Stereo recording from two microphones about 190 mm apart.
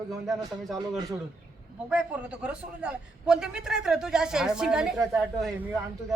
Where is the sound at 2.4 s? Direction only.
5° right (ahead or behind).